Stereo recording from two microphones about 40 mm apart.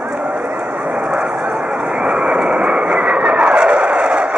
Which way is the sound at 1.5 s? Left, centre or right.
Right.